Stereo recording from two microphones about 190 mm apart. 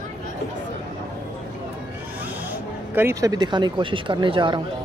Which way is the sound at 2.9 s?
15° right (ahead or behind).